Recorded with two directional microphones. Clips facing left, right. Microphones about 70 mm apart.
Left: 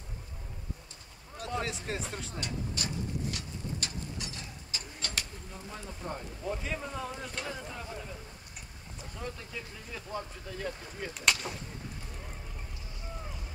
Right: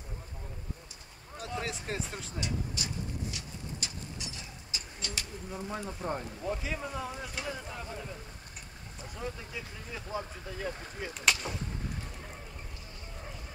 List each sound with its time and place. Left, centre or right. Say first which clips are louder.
1.6 s speech: right 1 dB; centre
2.4 s a sound: right 1 dB; left
5.7 s speech: right 4 dB; centre
6.4 s speech: left 2 dB; centre
9.1 s speech: right 1 dB; centre